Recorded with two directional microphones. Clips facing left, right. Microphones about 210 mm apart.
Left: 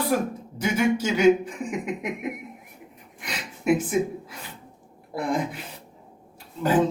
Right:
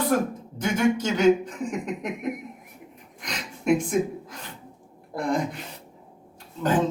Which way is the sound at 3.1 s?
5° left (ahead or behind).